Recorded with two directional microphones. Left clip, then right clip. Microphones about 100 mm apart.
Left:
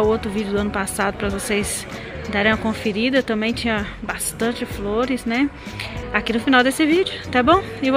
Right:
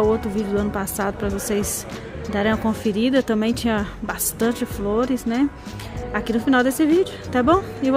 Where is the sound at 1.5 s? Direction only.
20° right (ahead or behind).